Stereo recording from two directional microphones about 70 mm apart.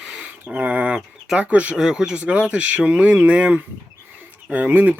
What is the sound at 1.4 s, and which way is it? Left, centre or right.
Speech, centre.